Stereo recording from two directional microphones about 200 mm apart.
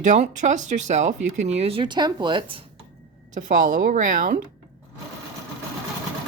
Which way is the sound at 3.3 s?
40° right (ahead or behind).